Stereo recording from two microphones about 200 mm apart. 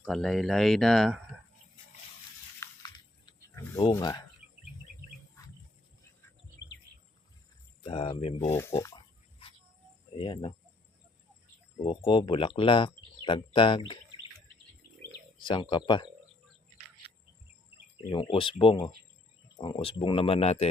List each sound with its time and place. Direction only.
0.0 s speech: centre (ahead or behind)
2.6 s a sound: 15° left (ahead or behind)
3.9 s speech: 20° left (ahead or behind)
7.9 s speech: 25° left (ahead or behind)
8.4 s speech: 15° left (ahead or behind)
10.2 s speech: 25° left (ahead or behind)
11.8 s speech: 25° left (ahead or behind)
15.4 s speech: 25° left (ahead or behind)
17.9 s speech: 25° left (ahead or behind)